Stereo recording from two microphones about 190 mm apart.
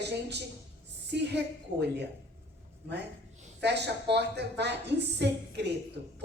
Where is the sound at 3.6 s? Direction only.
60° right (ahead or behind).